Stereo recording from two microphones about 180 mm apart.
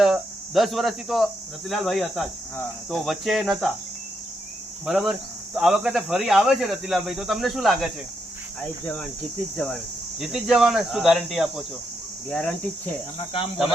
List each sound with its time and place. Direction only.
0.0 s speech: centre (ahead or behind)
4.9 s speech: 5° right (ahead or behind)
9.6 s speech: 5° left (ahead or behind)
13.1 s speech: 30° left (ahead or behind)